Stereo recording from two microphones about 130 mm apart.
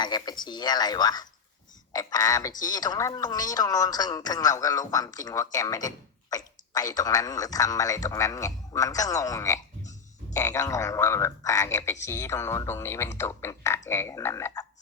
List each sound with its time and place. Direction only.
0.0 s speech: 35° left (ahead or behind)
1.9 s frog: 30° left (ahead or behind)